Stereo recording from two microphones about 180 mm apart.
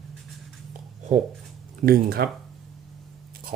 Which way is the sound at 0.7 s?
40° right (ahead or behind).